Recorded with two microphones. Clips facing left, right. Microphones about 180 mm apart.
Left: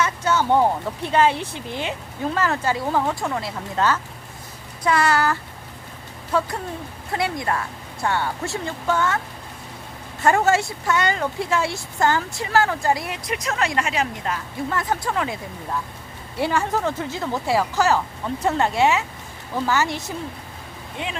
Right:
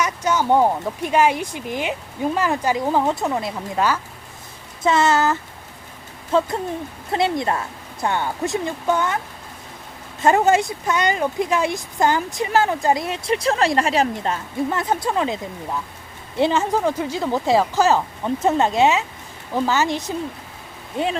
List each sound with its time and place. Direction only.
0.0 s speech: 15° right (ahead or behind)
4.8 s speech: 25° right (ahead or behind)
16.4 s speech: 20° right (ahead or behind)
21.0 s speech: 40° right (ahead or behind)